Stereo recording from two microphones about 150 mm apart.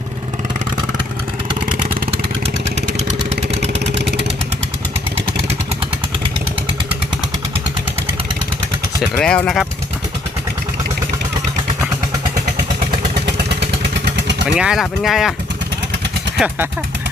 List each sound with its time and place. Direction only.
9.0 s speech: 5° left (ahead or behind)
13.3 s vehicle: 90° right
14.4 s speech: 5° right (ahead or behind)